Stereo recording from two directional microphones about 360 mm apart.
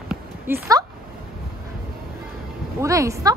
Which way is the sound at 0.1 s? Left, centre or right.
Centre.